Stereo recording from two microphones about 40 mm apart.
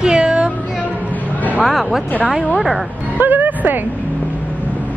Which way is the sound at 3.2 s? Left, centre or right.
Right.